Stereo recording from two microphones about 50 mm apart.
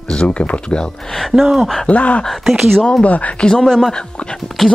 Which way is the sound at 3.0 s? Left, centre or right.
Left.